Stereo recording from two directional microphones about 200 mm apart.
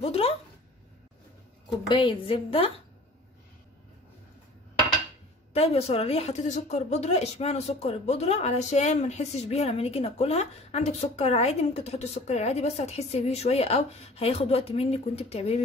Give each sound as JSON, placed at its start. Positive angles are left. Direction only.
{"t": 0.0, "sound": "a woman's voice", "side_deg": 30}
{"t": 1.9, "sound": "a woman's voice", "side_deg": 25}
{"t": 5.5, "sound": "a woman's voice", "side_deg": 30}